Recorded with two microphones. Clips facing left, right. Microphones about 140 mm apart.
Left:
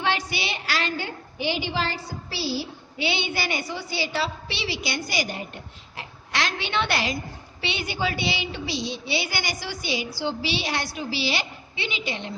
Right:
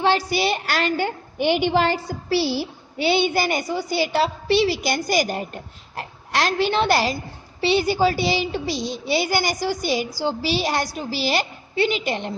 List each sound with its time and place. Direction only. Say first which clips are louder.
0.0 s a woman's voice: right 7 dB; 35° right (ahead or behind)